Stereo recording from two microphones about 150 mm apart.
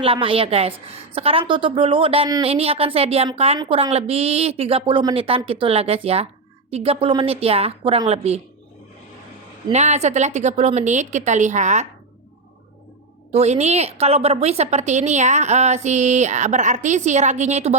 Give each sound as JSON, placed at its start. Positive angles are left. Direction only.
{"t": 0.0, "sound": "a woman's voice", "side_deg": -35}
{"t": 9.7, "sound": "a woman's voice", "side_deg": -50}
{"t": 13.3, "sound": "a woman's voice", "side_deg": -50}